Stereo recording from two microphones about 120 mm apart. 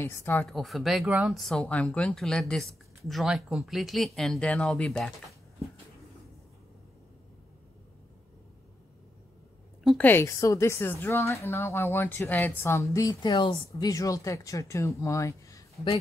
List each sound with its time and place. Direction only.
0.0 s a woman's voice: 20° left (ahead or behind)
0.5 s a woman's voice: centre (ahead or behind)
10.0 s a woman's voice: 20° left (ahead or behind)